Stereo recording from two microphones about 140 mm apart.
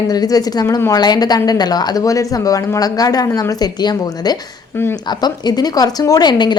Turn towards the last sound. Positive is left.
turn(degrees=30)  # may be behind; listen again after turning